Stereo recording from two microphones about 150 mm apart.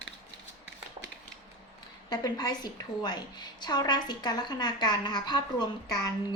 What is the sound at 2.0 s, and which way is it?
A woman's voice, 25° left (ahead or behind).